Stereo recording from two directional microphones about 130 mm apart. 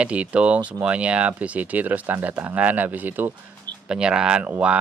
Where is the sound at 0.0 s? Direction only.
10° right (ahead or behind).